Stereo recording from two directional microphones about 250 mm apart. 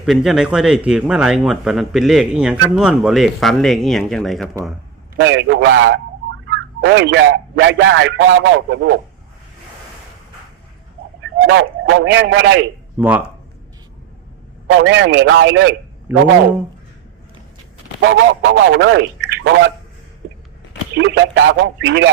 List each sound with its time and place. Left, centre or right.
0.0 s speech: centre
5.1 s a man's voice: right
11.4 s a man's voice: right
13.0 s speech: centre
14.8 s a man's voice: right
18.0 s a man's voice: right
20.9 s a man's voice: right